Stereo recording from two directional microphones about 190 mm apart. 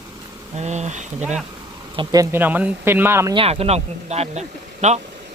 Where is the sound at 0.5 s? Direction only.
35° right (ahead or behind).